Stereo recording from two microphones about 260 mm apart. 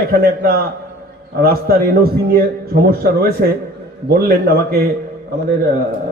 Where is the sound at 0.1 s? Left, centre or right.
Right.